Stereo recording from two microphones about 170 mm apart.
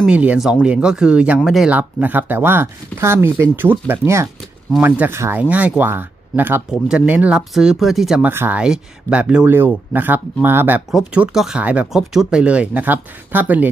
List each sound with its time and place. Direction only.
0.0 s speech: 5° right (ahead or behind)